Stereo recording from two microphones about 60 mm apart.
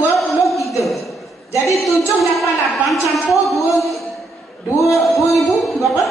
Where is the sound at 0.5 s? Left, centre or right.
Centre.